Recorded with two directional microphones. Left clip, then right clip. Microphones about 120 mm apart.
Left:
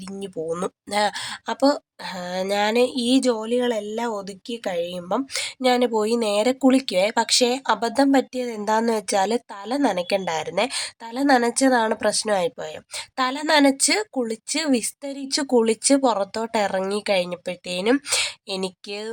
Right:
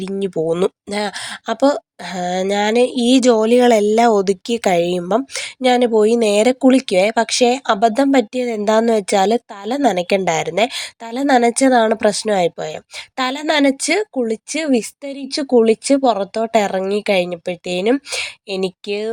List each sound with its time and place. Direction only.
0.4 s a woman's voice: 40° right (ahead or behind); by 5.0 s 70° right (ahead or behind)
5.3 s speech: 35° right (ahead or behind)
6.6 s speech: 35° right (ahead or behind)
15.3 s speech: 15° right (ahead or behind); by 19.1 s 30° right (ahead or behind)